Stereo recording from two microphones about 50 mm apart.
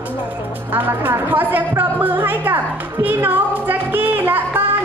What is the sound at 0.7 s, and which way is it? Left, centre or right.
Speech, right.